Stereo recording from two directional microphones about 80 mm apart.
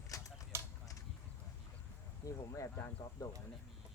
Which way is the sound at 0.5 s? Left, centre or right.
Right.